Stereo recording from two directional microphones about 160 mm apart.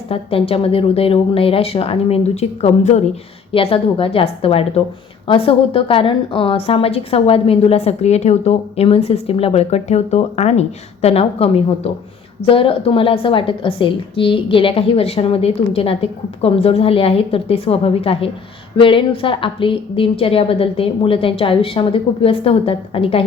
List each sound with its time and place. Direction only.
0.1 s a woman's voice: 35° left (ahead or behind)